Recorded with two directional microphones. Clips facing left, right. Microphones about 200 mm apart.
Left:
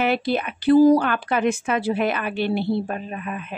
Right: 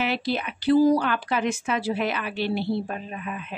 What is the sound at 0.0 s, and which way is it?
A woman's voice, 55° left (ahead or behind).